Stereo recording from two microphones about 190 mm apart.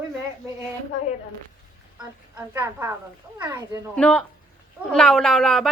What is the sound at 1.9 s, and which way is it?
A woman's voice, 10° right (ahead or behind).